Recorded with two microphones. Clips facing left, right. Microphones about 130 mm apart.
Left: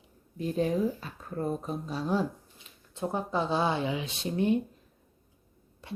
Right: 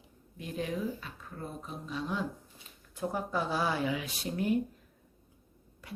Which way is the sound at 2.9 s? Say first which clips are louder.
Left 3 dB; 25° left (ahead or behind).